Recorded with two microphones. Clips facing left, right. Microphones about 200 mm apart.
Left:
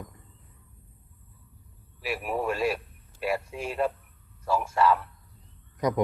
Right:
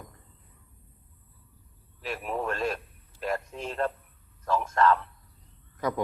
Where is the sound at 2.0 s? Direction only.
10° left (ahead or behind).